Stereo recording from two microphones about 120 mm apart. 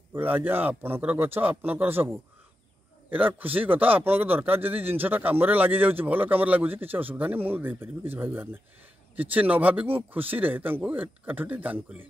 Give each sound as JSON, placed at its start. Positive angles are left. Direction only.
{"t": 0.1, "sound": "a man's voice", "side_deg": -15}